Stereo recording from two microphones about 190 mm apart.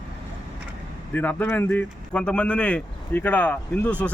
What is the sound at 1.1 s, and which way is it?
Speech, 10° left (ahead or behind).